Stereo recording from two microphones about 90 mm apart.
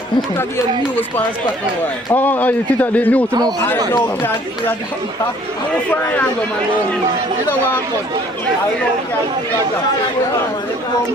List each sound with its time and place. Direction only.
2.1 s speech: 20° left (ahead or behind)
5.9 s speech: 15° left (ahead or behind)